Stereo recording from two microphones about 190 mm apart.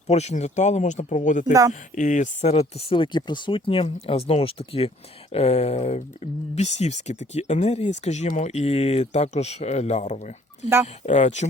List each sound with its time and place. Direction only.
0.1 s speech: 35° left (ahead or behind)